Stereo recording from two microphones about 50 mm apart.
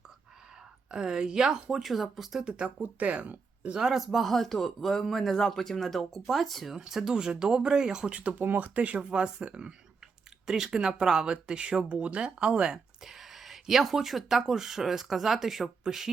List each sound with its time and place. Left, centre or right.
0.9 s speech: centre
2.5 s speech: right
3.8 s speech: centre
6.7 s speech: centre
8.4 s speech: right
10.4 s speech: centre